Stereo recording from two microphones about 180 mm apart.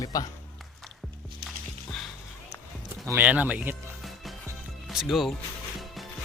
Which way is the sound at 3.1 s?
10° right (ahead or behind).